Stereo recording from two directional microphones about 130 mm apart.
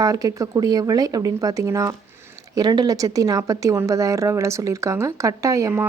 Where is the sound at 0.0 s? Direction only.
30° right (ahead or behind).